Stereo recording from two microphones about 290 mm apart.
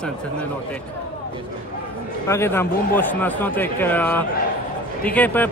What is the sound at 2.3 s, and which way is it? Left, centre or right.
Speech, centre.